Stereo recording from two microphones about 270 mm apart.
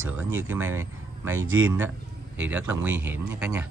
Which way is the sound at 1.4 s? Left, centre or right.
Right.